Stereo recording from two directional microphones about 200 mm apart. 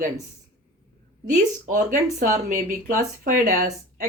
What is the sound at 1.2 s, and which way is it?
Speech, 40° right (ahead or behind).